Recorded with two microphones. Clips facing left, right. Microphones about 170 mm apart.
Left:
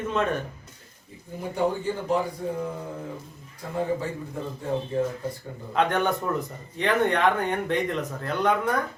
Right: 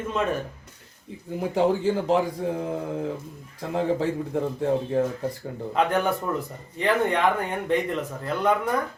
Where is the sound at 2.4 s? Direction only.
75° right (ahead or behind).